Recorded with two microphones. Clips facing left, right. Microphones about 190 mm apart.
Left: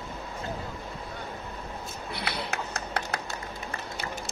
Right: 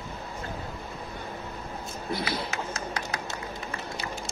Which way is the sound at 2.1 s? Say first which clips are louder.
Right 3 dB; 65° left (ahead or behind).